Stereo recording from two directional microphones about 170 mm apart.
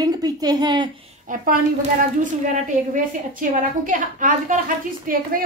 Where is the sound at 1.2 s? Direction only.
55° right (ahead or behind).